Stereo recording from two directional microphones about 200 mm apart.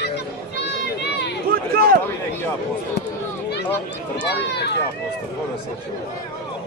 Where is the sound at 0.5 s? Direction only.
60° left (ahead or behind).